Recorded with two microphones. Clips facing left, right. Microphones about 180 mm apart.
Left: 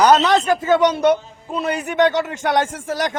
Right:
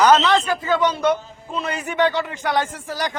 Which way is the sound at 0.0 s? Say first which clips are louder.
Left 1 dB; 40° left (ahead or behind).